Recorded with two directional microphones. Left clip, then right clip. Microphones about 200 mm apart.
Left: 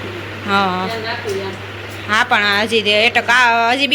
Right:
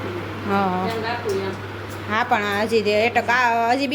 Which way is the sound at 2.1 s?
Centre (ahead or behind).